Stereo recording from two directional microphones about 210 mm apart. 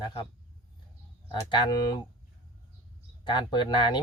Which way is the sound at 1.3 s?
20° left (ahead or behind).